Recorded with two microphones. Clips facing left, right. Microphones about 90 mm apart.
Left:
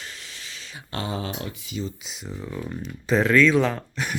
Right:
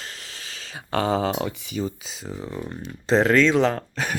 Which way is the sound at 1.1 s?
90° right.